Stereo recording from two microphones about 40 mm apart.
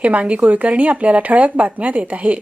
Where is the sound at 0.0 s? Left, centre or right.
Right.